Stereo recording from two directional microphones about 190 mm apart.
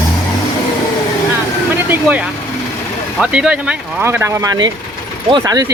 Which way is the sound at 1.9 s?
5° right (ahead or behind).